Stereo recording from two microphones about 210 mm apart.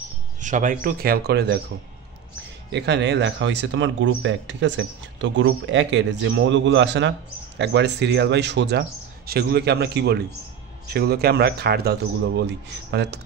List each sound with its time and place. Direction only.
0.4 s speech: 35° right (ahead or behind)
2.7 s speech: 55° right (ahead or behind)